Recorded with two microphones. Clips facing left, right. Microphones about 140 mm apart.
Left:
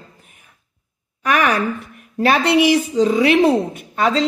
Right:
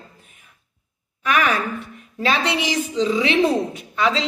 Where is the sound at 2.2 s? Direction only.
55° left (ahead or behind).